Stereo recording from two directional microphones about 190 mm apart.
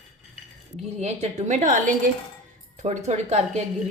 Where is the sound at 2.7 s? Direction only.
40° right (ahead or behind).